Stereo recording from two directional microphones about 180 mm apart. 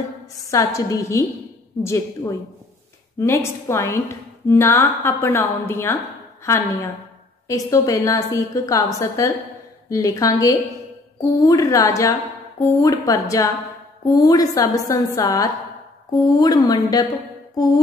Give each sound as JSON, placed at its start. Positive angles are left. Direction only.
{"t": 0.5, "sound": "a woman's voice", "side_deg": 20}
{"t": 11.3, "sound": "a woman's voice", "side_deg": 20}